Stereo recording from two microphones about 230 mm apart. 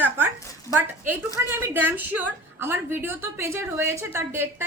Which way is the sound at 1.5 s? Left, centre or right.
Centre.